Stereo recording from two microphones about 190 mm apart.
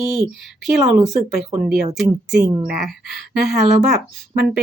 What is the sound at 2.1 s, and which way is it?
Speech, 20° right (ahead or behind).